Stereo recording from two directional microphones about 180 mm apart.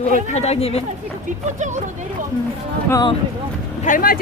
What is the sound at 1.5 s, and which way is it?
Speech, 40° right (ahead or behind).